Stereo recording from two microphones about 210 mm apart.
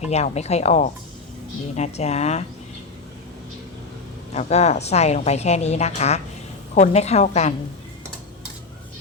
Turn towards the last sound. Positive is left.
turn(degrees=30)  # may be behind; listen again after turning